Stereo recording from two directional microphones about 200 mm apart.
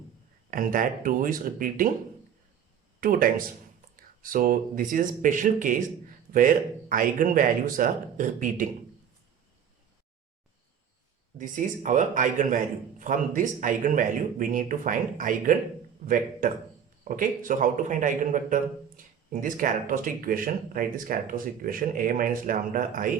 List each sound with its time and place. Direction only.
0.5 s a man's voice: 45° right (ahead or behind)
3.0 s a man's voice: 45° right (ahead or behind)
11.3 s a man's voice: 40° right (ahead or behind)